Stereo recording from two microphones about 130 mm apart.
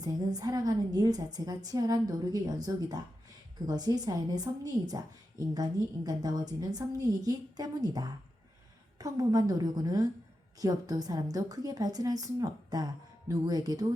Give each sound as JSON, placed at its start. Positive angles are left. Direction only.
{"t": 0.0, "sound": "a woman's voice", "side_deg": -30}